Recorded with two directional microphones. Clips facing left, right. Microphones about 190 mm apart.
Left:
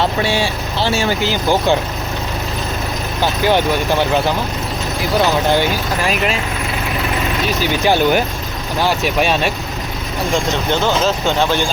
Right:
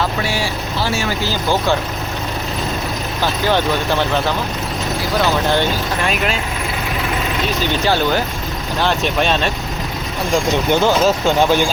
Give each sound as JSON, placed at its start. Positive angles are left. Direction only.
{"t": 0.0, "sound": "speech", "side_deg": 25}
{"t": 3.4, "sound": "speech", "side_deg": 15}
{"t": 5.5, "sound": "speech", "side_deg": 5}
{"t": 7.6, "sound": "speech", "side_deg": 15}
{"t": 10.7, "sound": "speech", "side_deg": -10}